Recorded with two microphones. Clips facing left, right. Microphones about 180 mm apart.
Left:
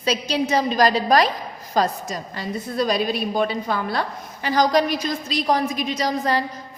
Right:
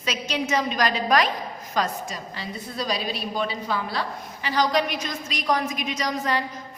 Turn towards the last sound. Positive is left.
turn(degrees=35)  # may be behind; listen again after turning